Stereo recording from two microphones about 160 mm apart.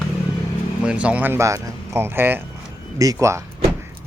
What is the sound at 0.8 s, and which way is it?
Speech, 5° right (ahead or behind).